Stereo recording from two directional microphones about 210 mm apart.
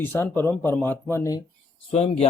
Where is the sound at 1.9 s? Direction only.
30° left (ahead or behind).